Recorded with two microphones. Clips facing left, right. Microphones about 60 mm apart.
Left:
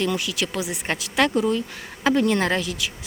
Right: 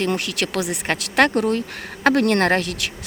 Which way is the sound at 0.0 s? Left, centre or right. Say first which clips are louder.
Right 2 dB; right.